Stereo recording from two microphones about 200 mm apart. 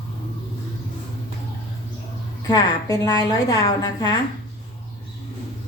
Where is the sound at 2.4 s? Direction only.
20° left (ahead or behind).